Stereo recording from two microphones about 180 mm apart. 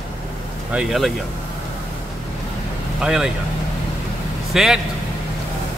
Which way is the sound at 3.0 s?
5° right (ahead or behind).